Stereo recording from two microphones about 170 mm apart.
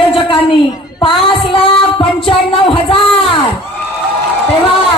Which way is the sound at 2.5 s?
30° left (ahead or behind).